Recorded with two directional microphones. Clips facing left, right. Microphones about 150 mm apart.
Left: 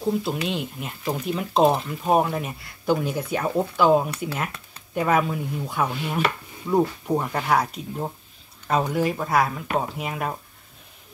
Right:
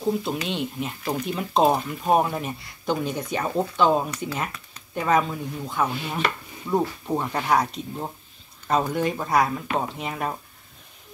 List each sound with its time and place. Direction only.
0.0 s speech: centre (ahead or behind)